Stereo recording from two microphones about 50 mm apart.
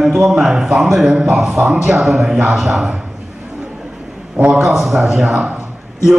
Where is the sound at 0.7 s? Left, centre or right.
Centre.